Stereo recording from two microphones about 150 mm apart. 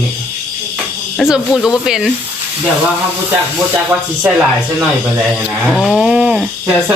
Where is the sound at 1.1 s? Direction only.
Centre (ahead or behind).